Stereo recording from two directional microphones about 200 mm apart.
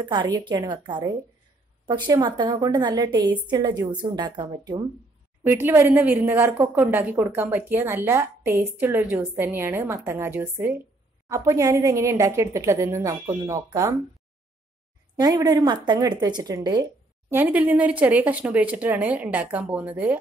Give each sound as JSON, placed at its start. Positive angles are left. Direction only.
{"t": 0.0, "sound": "speech", "side_deg": -20}
{"t": 5.4, "sound": "a woman's voice", "side_deg": -10}
{"t": 15.1, "sound": "speech", "side_deg": -20}
{"t": 17.3, "sound": "a woman's voice", "side_deg": -10}